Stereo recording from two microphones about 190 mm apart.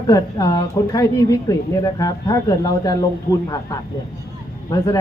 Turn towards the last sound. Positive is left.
turn(degrees=20)  # may be behind; listen again after turning